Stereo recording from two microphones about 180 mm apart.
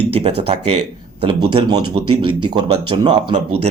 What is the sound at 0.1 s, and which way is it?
Speech, 35° right (ahead or behind).